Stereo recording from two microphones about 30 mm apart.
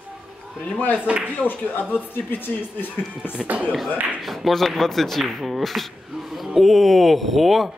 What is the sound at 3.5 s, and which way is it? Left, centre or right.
Speech, right.